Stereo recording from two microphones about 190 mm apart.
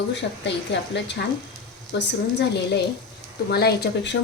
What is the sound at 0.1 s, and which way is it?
Speech, 65° left (ahead or behind).